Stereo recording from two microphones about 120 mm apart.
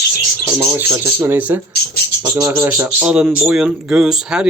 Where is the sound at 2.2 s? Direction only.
30° right (ahead or behind).